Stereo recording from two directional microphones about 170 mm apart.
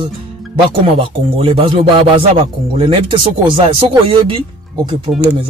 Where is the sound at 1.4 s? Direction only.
35° right (ahead or behind).